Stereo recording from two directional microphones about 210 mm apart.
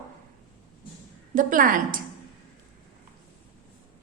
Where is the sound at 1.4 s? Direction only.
40° right (ahead or behind).